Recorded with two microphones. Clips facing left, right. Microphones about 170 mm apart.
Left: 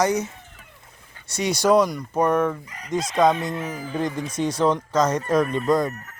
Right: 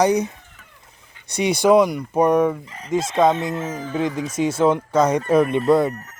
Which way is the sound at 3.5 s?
25° right (ahead or behind).